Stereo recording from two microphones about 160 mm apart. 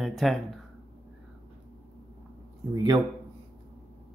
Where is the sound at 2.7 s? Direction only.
25° right (ahead or behind).